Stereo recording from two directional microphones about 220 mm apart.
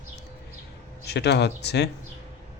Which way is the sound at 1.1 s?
50° left (ahead or behind).